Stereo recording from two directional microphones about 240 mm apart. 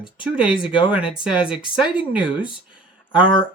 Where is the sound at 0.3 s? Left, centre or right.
Centre.